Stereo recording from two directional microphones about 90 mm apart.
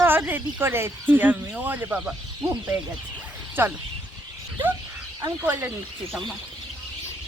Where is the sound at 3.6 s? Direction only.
25° right (ahead or behind).